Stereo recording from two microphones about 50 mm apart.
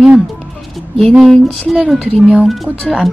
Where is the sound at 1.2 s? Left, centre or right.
Centre.